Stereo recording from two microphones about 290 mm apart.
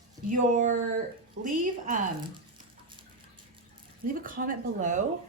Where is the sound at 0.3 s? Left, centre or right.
Right.